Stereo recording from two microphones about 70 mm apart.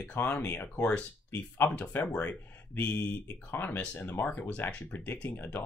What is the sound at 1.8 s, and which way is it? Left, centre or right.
Speech, left.